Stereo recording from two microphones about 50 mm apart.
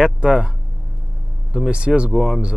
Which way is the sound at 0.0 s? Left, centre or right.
Centre.